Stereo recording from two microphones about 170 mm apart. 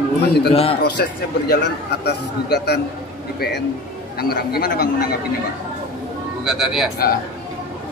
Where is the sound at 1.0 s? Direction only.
70° left (ahead or behind).